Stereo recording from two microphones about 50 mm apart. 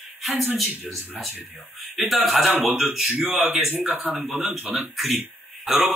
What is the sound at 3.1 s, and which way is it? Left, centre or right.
Speech, right.